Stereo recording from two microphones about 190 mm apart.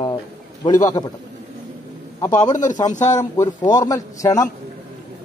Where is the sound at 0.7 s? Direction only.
20° left (ahead or behind).